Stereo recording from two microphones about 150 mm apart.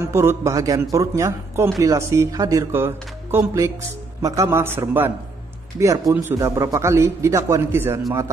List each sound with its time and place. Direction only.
0.0 s a man's voice: 20° right (ahead or behind)